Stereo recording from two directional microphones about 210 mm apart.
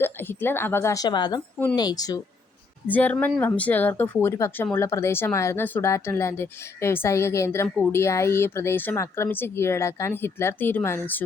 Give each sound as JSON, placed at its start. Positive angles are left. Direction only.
{"t": 0.0, "sound": "a woman's voice", "side_deg": 10}